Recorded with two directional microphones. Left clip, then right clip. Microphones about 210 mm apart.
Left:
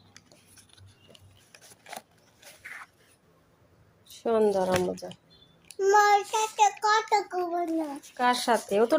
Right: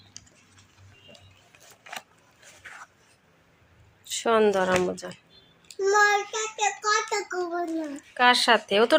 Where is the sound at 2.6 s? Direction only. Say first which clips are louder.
Left 1 dB; 30° left (ahead or behind).